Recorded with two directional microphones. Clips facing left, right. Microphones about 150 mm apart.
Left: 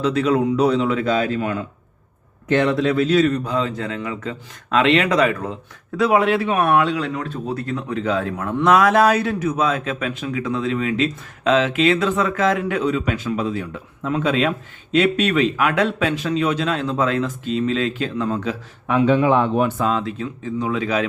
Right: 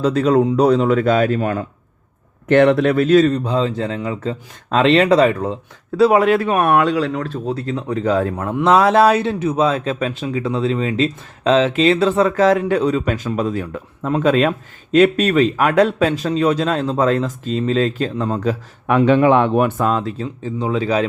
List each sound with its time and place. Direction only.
0.0 s speech: 40° right (ahead or behind)
2.5 s speech: 60° right (ahead or behind)
3.2 s speech: 25° right (ahead or behind)
8.6 s speech: 30° right (ahead or behind)
18.9 s speech: 65° right (ahead or behind); by 21.1 s 30° right (ahead or behind)